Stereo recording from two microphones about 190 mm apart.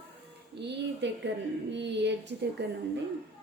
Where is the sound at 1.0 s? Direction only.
70° right (ahead or behind).